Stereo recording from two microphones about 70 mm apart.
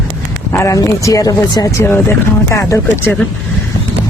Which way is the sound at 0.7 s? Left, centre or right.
Left.